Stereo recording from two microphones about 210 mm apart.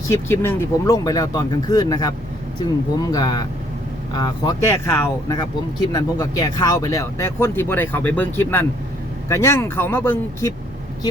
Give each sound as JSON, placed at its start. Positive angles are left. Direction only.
{"t": 0.1, "sound": "speech", "side_deg": 10}